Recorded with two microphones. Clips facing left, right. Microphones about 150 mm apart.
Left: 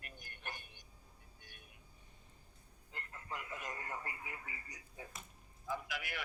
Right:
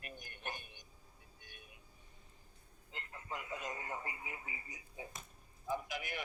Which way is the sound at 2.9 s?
20° right (ahead or behind).